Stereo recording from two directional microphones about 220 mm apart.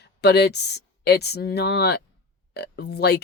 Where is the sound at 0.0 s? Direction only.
50° left (ahead or behind).